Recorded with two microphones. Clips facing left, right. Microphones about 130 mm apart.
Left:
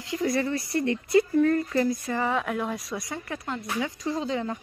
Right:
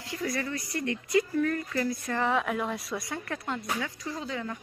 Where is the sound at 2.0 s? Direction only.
5° left (ahead or behind).